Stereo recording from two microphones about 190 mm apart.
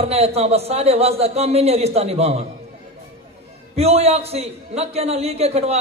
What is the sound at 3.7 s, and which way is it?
A man's voice, 35° right (ahead or behind).